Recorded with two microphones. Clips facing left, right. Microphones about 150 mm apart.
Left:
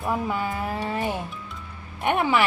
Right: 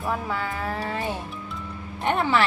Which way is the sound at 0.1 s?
20° left (ahead or behind).